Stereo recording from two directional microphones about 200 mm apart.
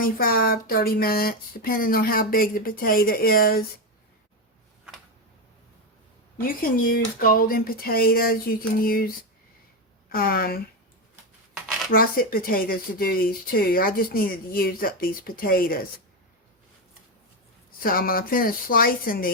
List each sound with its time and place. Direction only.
0.0 s speech: 45° left (ahead or behind)
6.3 s speech: 45° left (ahead or behind)
11.9 s speech: 45° left (ahead or behind)
17.7 s speech: 45° left (ahead or behind)